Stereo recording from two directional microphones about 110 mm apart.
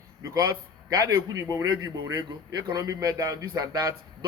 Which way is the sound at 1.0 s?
30° right (ahead or behind).